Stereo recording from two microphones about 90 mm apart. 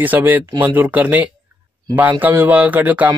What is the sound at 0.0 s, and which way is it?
Speech, 20° right (ahead or behind).